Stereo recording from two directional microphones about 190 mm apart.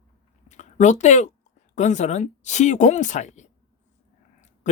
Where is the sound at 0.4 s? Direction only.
40° left (ahead or behind).